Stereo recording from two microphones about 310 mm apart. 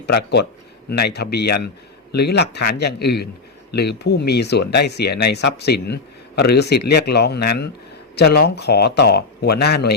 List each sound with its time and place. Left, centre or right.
0.0 s a man's voice: left